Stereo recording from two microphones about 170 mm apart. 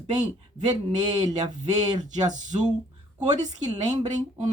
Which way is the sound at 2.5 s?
35° right (ahead or behind).